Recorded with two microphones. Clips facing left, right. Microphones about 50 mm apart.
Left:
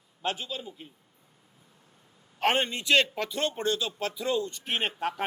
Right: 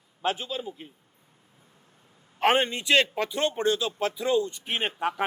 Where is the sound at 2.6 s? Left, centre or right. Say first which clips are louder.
Right 1 dB; right.